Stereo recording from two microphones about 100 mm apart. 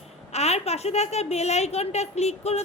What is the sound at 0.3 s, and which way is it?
A woman's voice, 90° left.